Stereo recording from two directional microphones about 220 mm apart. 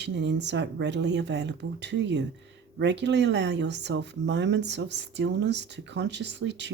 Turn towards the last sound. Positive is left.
turn(degrees=-55)  # may be behind; listen again after turning